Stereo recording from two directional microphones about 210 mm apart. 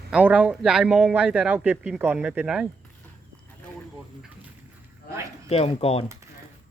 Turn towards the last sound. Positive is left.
turn(degrees=30)  # may be behind; listen again after turning